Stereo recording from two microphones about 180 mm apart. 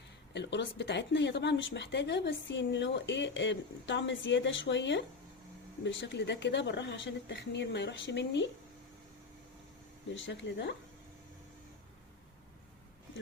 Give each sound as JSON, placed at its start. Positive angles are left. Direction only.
{"t": 0.3, "sound": "a woman's voice", "side_deg": 75}
{"t": 10.2, "sound": "speech", "side_deg": 80}